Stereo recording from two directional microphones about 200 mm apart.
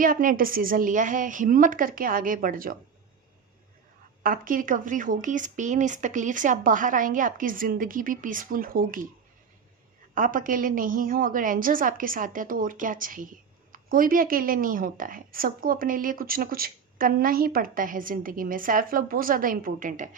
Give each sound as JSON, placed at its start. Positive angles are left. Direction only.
{"t": 0.0, "sound": "a woman's voice", "side_deg": -45}
{"t": 4.2, "sound": "speech", "side_deg": -45}
{"t": 10.2, "sound": "a woman's voice", "side_deg": -40}